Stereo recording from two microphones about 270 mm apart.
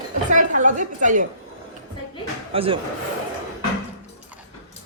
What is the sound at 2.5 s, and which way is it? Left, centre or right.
Speech, right.